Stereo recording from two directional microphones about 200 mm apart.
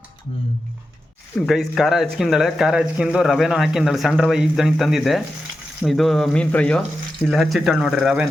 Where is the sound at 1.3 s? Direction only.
Centre (ahead or behind).